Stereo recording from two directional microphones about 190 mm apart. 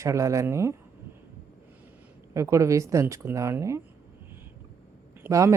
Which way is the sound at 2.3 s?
15° right (ahead or behind).